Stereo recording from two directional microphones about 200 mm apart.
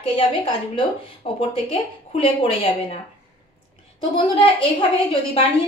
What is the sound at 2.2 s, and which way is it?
Speech, 30° left (ahead or behind).